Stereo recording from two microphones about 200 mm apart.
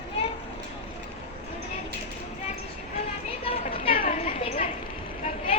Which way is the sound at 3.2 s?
30° left (ahead or behind).